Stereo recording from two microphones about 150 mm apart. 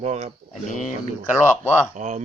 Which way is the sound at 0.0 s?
50° right (ahead or behind).